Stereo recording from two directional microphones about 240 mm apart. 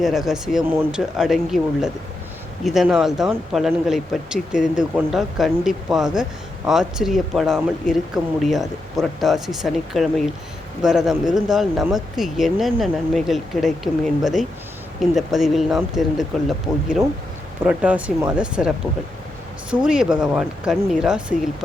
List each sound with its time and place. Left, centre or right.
0.0 s speech: centre
19.7 s speech: centre